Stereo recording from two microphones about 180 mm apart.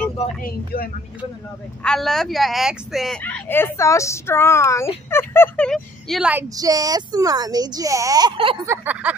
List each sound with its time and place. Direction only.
0.4 s speech: 55° left (ahead or behind)
1.8 s speech: 5° left (ahead or behind)
6.3 s a woman's voice: 20° right (ahead or behind)
8.6 s a sound: 10° right (ahead or behind)